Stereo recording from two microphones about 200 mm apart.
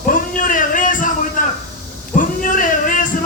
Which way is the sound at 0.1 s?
40° left (ahead or behind).